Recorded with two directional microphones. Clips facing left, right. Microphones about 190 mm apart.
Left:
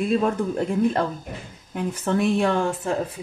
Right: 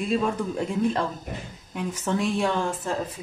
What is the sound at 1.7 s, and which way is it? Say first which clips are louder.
Speech: left 3 dB; 60° left (ahead or behind).